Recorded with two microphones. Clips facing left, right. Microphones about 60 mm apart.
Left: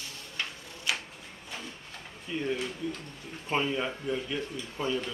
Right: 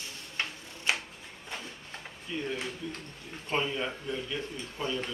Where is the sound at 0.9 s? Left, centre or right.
Right.